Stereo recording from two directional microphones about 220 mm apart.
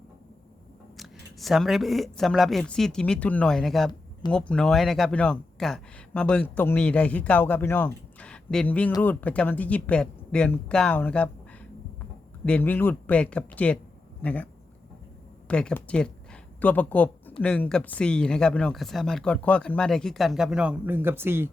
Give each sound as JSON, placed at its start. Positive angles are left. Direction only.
{"t": 0.9, "sound": "speech", "side_deg": 0}
{"t": 12.5, "sound": "speech", "side_deg": 10}
{"t": 15.4, "sound": "speech", "side_deg": 5}